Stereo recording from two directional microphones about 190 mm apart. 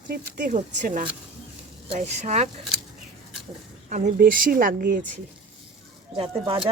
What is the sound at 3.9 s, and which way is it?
Speech, 40° right (ahead or behind).